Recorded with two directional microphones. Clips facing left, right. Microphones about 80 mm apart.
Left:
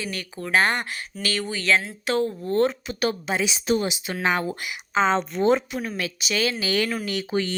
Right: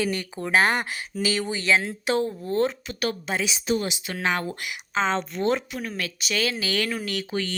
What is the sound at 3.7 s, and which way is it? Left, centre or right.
Speech, left.